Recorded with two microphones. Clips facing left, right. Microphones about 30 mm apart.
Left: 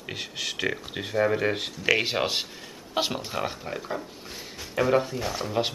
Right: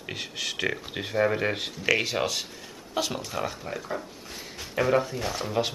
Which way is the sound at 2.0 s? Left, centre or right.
Left.